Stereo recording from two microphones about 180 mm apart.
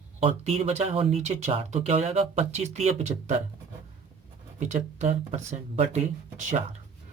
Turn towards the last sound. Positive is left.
turn(degrees=-40)  # may be behind; listen again after turning